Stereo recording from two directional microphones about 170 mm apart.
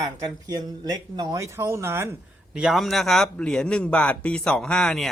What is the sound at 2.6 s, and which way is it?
A man's voice, centre (ahead or behind).